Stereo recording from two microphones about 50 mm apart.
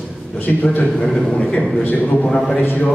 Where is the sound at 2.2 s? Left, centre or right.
Centre.